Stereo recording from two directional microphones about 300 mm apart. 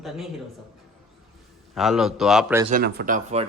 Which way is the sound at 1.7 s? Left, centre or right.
Centre.